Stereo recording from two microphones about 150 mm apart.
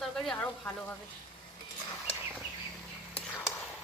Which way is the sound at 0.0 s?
5° left (ahead or behind).